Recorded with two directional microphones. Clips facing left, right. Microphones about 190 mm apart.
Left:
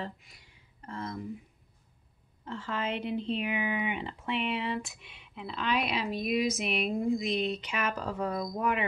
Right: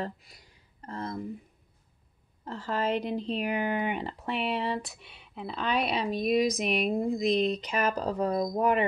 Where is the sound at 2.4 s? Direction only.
40° right (ahead or behind).